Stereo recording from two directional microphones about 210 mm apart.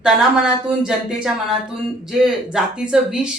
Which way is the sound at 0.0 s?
Centre (ahead or behind).